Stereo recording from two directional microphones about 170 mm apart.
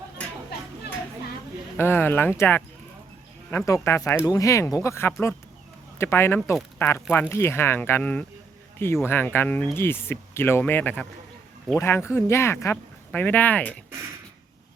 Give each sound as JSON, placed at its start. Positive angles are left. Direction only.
{"t": 1.7, "sound": "speech", "side_deg": 10}
{"t": 3.8, "sound": "speech", "side_deg": 15}